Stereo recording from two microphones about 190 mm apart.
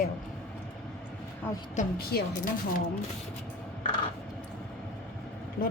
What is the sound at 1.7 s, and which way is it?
Speech, 45° left (ahead or behind).